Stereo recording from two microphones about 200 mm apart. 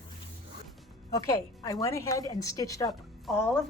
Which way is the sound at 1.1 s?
15° left (ahead or behind).